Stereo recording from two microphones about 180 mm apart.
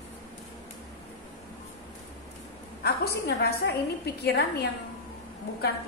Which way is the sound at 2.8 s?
65° left (ahead or behind).